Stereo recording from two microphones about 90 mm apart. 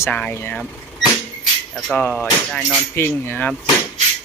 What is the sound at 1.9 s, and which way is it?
Speech, 20° left (ahead or behind).